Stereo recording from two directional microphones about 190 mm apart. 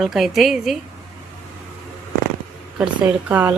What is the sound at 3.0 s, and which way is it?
Speech, 10° right (ahead or behind).